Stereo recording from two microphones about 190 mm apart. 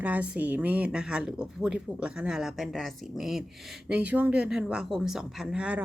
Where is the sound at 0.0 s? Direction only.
10° right (ahead or behind).